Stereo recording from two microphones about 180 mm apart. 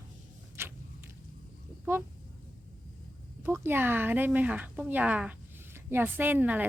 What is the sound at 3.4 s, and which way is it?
Speech, 15° right (ahead or behind).